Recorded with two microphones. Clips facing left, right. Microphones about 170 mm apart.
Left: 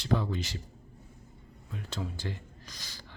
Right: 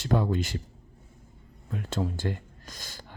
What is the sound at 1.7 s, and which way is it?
Speech, 50° right (ahead or behind).